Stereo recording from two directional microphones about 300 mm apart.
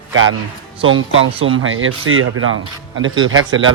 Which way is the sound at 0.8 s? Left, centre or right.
Right.